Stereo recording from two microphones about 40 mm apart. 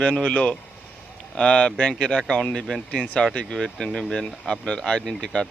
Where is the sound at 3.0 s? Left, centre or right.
Left.